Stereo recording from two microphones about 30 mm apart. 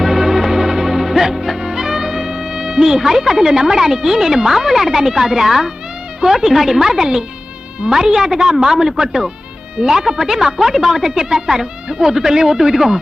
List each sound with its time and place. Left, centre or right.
0.0 s music: centre
6.2 s a woman's voice: centre